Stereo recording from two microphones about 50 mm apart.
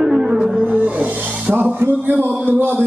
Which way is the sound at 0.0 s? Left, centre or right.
Centre.